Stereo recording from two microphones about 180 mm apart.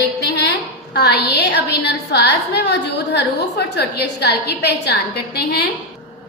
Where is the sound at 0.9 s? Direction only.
65° left (ahead or behind).